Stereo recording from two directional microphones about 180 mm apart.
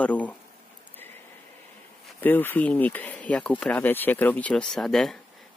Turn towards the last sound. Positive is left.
turn(degrees=0)  # may be behind; listen again after turning